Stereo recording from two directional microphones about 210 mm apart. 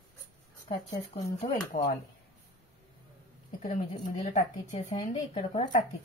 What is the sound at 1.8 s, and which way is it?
Speech, 40° left (ahead or behind).